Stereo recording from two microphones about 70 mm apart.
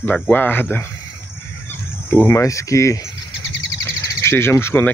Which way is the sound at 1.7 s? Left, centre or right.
Left.